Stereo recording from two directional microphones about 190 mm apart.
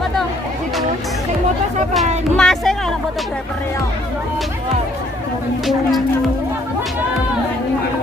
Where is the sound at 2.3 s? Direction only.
5° left (ahead or behind).